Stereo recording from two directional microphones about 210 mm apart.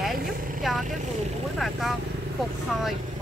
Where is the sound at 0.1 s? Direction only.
45° right (ahead or behind).